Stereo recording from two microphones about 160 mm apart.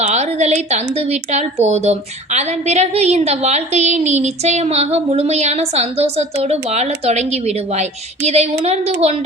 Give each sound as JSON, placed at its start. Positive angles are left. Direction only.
{"t": 0.0, "sound": "a woman's voice", "side_deg": -45}